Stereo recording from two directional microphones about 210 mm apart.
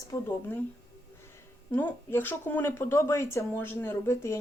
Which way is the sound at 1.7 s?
10° left (ahead or behind).